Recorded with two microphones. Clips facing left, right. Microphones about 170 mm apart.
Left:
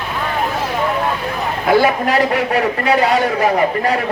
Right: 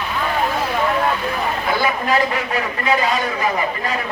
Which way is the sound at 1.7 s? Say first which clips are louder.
Left 7 dB; 70° left (ahead or behind).